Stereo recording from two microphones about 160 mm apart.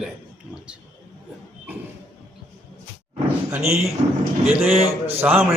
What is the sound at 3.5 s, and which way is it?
Speech, 20° right (ahead or behind).